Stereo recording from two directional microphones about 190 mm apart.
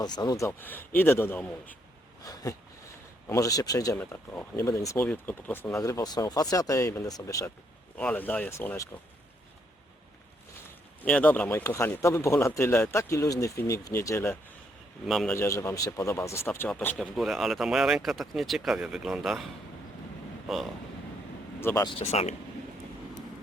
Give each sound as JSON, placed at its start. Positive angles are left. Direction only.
{"t": 0.0, "sound": "speech", "side_deg": 20}
{"t": 11.0, "sound": "speech", "side_deg": 10}
{"t": 15.0, "sound": "speech", "side_deg": 0}
{"t": 15.4, "sound": "speech", "side_deg": 15}
{"t": 20.5, "sound": "speech", "side_deg": 0}
{"t": 21.6, "sound": "speech", "side_deg": 15}
{"t": 21.8, "sound": "speech", "side_deg": 30}